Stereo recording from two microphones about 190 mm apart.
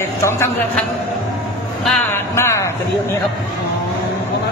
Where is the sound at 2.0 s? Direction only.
10° left (ahead or behind).